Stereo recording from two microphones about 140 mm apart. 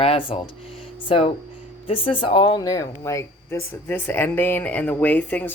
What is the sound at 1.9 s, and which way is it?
Speech, 40° left (ahead or behind).